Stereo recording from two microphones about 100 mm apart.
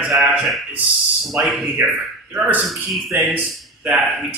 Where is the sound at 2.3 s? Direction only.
15° right (ahead or behind).